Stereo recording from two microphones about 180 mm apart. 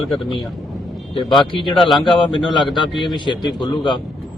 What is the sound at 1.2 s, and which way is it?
Speech, 25° left (ahead or behind).